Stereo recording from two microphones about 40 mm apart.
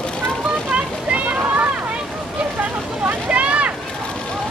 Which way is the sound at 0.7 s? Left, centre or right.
Right.